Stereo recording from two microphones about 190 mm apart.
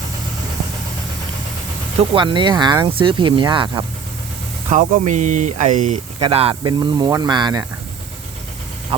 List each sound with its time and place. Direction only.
2.0 s speech: 25° right (ahead or behind)
4.7 s speech: 45° right (ahead or behind)
6.1 s speech: 30° right (ahead or behind)